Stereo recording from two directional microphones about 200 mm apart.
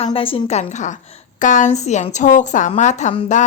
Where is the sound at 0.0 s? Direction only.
30° left (ahead or behind).